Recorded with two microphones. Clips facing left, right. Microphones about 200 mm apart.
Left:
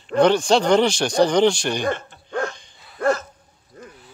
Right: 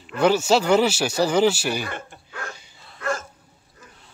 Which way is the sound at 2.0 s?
5° right (ahead or behind).